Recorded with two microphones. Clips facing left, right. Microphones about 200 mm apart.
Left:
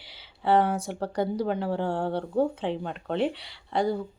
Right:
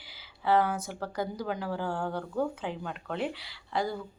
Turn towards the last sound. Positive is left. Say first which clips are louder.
# left 5 dB
turn(degrees=30)  # may be behind; listen again after turning